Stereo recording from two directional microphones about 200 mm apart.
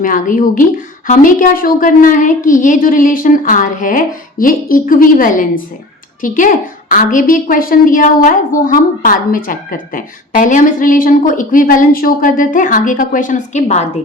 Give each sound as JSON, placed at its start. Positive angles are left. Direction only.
{"t": 0.0, "sound": "a woman's voice", "side_deg": 40}